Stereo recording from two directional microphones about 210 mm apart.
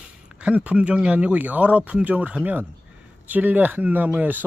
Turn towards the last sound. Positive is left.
turn(degrees=-10)  # may be behind; listen again after turning